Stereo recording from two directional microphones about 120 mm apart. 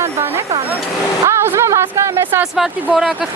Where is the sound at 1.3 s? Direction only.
20° right (ahead or behind).